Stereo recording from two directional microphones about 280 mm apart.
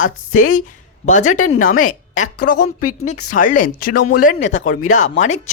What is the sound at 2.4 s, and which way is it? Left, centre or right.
Speech, left.